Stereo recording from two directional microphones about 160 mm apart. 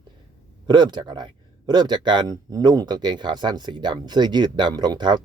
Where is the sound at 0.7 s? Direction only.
25° right (ahead or behind).